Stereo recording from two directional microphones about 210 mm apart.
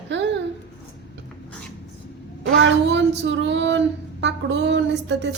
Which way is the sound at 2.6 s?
55° right (ahead or behind).